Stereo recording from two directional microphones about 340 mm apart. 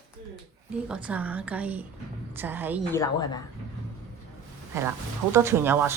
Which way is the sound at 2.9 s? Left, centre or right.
Centre.